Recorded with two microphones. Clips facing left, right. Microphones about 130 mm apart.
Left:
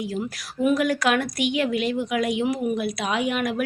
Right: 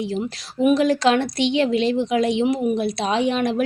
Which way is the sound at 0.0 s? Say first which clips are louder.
Right 3 dB; 25° right (ahead or behind).